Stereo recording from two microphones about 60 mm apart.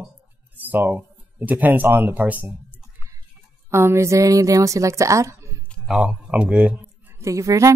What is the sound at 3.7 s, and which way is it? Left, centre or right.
A woman's voice, right.